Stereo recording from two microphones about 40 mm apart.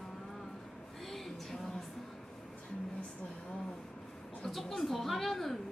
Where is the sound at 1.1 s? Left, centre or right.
Centre.